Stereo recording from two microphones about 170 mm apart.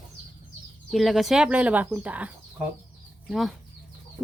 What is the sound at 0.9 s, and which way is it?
Speech, centre (ahead or behind).